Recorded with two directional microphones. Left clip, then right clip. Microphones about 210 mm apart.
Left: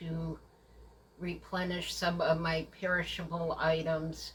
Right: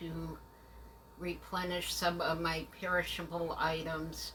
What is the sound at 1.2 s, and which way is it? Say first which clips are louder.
Speech: left 1 dB; centre (ahead or behind).